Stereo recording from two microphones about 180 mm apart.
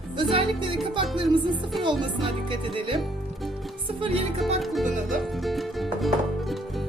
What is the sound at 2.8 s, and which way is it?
Speech, 30° right (ahead or behind).